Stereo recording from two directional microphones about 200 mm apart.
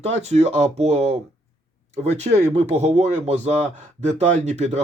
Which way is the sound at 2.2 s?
35° right (ahead or behind).